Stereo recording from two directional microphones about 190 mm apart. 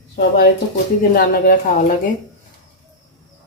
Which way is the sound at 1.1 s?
45° left (ahead or behind).